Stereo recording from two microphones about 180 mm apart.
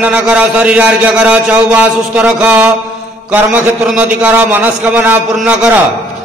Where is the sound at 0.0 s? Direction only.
5° right (ahead or behind).